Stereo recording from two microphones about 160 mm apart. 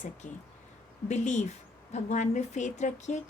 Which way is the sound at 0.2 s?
50° left (ahead or behind).